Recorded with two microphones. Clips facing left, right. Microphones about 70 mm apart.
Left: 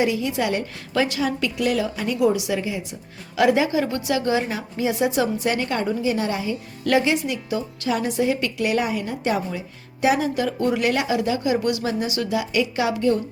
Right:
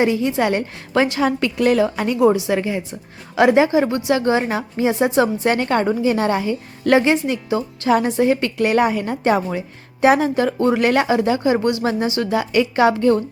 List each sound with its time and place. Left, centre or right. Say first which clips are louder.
0.0 s a woman's voice: right 4 dB; right
1.2 s a woman's voice: right 5 dB; right
2.1 s a woman's voice: right 4 dB; right
2.5 s a woman's voice: right 5 dB; right
3.3 s a woman's voice: right 5 dB; right